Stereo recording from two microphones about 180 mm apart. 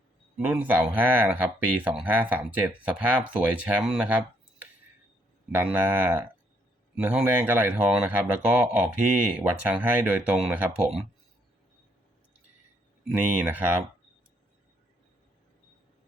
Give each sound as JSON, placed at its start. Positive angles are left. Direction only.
{"t": 0.3, "sound": "speech", "side_deg": -5}
{"t": 13.1, "sound": "speech", "side_deg": -10}